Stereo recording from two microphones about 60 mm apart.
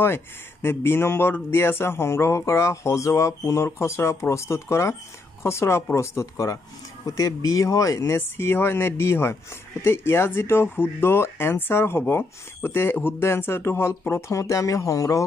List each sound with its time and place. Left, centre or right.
0.0 s speech: left
7.1 s speech: left
8.0 s speech: left
14.3 s speech: left